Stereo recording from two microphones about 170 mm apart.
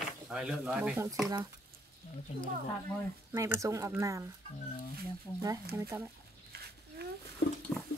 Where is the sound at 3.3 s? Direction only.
15° right (ahead or behind).